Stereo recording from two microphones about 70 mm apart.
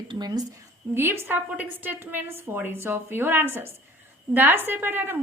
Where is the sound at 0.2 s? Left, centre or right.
Right.